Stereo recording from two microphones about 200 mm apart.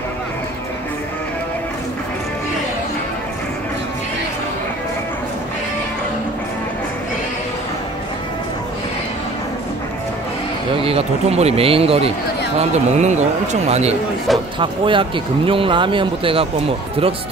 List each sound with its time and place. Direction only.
10.8 s speech: 30° right (ahead or behind)